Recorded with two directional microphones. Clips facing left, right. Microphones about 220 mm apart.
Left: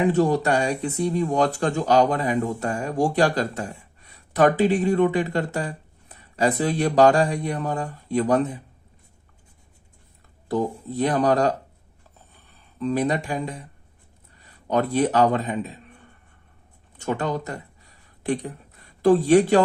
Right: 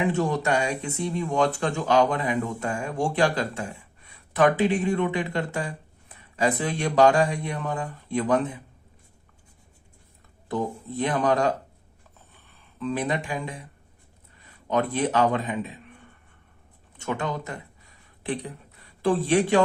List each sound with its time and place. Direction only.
0.0 s speech: 35° left (ahead or behind)
10.5 s speech: 40° left (ahead or behind)
12.8 s speech: 40° left (ahead or behind)
17.0 s speech: 40° left (ahead or behind)
19.0 s speech: 45° left (ahead or behind)